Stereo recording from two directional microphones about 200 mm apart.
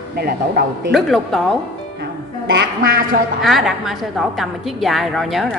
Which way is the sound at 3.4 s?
Centre (ahead or behind).